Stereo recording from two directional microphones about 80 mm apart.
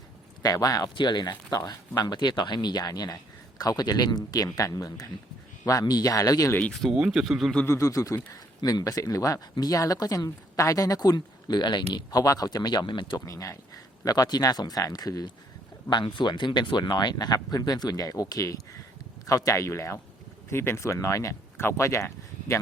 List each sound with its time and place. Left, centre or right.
0.4 s speech: left
0.9 s speech: left
6.7 s speech: centre
7.0 s speech: centre
7.7 s speech: left
12.1 s speech: left
13.2 s speech: left
15.9 s speech: left